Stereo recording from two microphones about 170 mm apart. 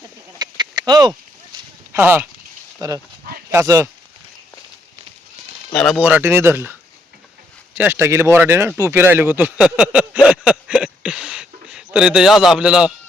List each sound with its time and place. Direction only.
0.8 s speech: 25° right (ahead or behind)
1.9 s speech: 10° right (ahead or behind)
2.8 s speech: 20° right (ahead or behind)
5.7 s speech: centre (ahead or behind)
6.0 s speech: 10° right (ahead or behind)
7.8 s speech: 15° right (ahead or behind)